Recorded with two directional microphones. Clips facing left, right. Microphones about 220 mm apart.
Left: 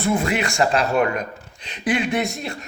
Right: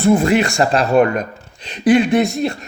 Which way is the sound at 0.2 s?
40° right (ahead or behind).